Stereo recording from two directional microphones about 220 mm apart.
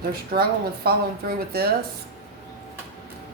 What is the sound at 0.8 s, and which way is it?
Speech, 45° right (ahead or behind).